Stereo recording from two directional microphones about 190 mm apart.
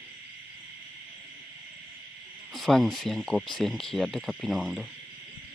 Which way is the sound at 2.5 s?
Centre (ahead or behind).